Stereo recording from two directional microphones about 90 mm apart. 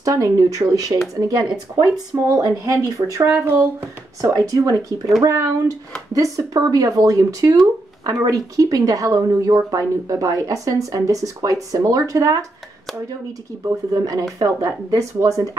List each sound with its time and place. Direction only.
0.0 s speech: 40° right (ahead or behind)
2.3 s speech: 40° right (ahead or behind)
13.7 s speech: 40° right (ahead or behind)